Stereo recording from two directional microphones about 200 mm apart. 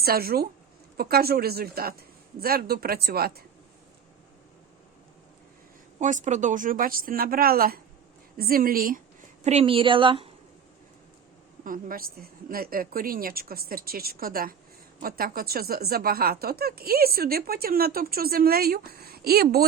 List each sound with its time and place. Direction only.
0.0 s speech: 50° right (ahead or behind)
6.0 s speech: 40° right (ahead or behind)
9.4 s a woman's voice: 30° right (ahead or behind)
11.6 s speech: 45° right (ahead or behind)